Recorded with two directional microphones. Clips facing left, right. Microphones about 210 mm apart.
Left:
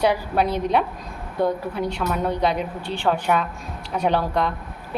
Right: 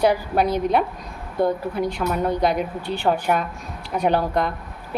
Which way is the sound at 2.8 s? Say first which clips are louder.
Right 2 dB; 40° right (ahead or behind).